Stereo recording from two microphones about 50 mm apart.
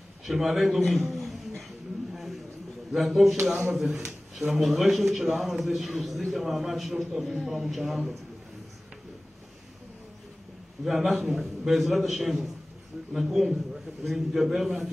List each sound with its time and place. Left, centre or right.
0.2 s a man's voice: centre
1.0 s a sound: centre
2.9 s a man's voice: centre
3.4 s speech: centre
3.7 s a man's voice: centre
10.9 s a man's voice: centre